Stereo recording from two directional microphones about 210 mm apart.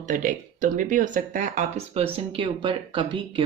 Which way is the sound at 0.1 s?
40° right (ahead or behind).